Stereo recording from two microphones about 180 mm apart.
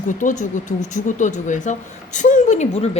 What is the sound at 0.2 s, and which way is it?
A woman's voice, 45° left (ahead or behind).